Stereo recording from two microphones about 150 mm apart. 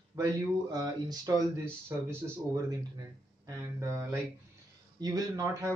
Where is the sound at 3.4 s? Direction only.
20° right (ahead or behind).